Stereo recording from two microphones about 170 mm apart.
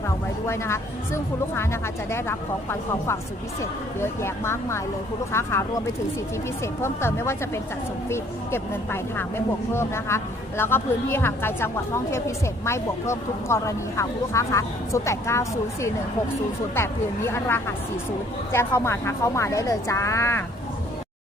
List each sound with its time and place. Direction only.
0.4 s speech: 15° left (ahead or behind)